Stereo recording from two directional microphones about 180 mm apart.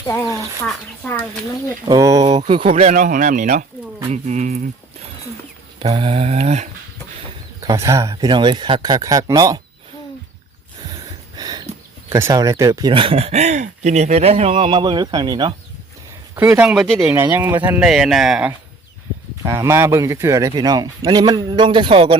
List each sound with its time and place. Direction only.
0.6 s speech: 5° left (ahead or behind)
1.9 s speech: 20° right (ahead or behind); by 3.7 s 45° right (ahead or behind)
4.1 s a sound: 40° right (ahead or behind)
5.8 s a sound: 30° right (ahead or behind)
7.6 s speech: 20° right (ahead or behind)
11.3 s a sound: 20° right (ahead or behind)
12.1 s speech: 15° right (ahead or behind)
16.3 s speech: 10° right (ahead or behind)
17.3 s speech: 10° right (ahead or behind)
19.5 s speech: 15° right (ahead or behind)